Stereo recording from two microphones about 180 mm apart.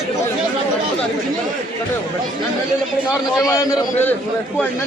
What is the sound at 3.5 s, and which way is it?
Speech, 15° left (ahead or behind).